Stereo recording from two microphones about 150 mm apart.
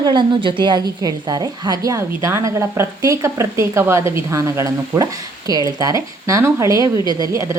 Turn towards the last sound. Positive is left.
turn(degrees=-20)  # may be behind; listen again after turning